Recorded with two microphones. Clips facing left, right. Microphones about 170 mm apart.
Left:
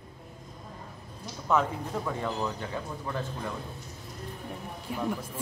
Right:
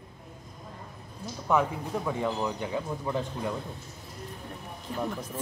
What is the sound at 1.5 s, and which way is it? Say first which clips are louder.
Speech: right 1 dB; 15° right (ahead or behind).